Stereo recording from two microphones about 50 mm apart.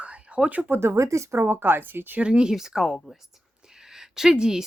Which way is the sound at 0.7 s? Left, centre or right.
Right.